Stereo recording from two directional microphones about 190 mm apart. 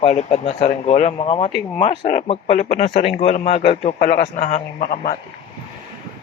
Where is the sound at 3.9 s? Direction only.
45° left (ahead or behind).